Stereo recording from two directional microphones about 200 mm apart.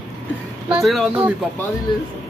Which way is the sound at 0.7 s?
Centre (ahead or behind).